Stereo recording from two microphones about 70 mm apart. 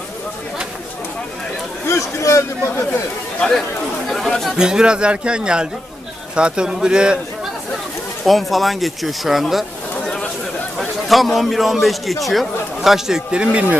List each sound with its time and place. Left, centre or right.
1.9 s speech: left
4.1 s speech: centre
4.5 s speech: centre
8.2 s a man's voice: centre
10.8 s a man's voice: centre